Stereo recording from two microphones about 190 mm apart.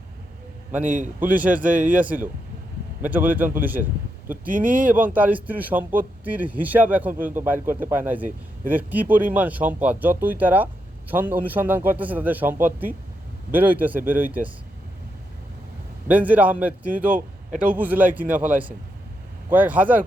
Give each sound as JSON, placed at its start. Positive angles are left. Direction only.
{"t": 0.9, "sound": "a man's voice", "side_deg": -45}
{"t": 1.4, "sound": "speech", "side_deg": -10}
{"t": 4.4, "sound": "a man's voice", "side_deg": -45}
{"t": 4.8, "sound": "speech", "side_deg": -10}
{"t": 16.0, "sound": "speech", "side_deg": -10}